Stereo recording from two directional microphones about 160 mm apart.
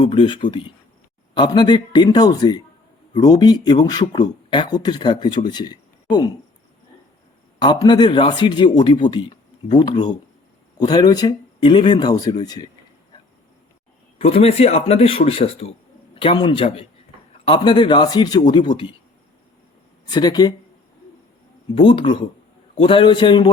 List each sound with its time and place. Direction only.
0.0 s a man's voice: 30° left (ahead or behind)
7.6 s speech: 25° left (ahead or behind)
14.2 s a man's voice: 40° left (ahead or behind)
20.1 s speech: 25° left (ahead or behind)
21.8 s a man's voice: 30° left (ahead or behind)